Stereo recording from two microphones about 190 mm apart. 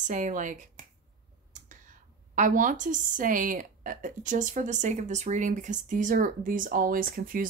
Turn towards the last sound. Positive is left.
turn(degrees=-45)  # may be behind; listen again after turning